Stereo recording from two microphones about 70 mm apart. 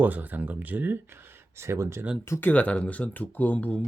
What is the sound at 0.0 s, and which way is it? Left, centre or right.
Speech, right.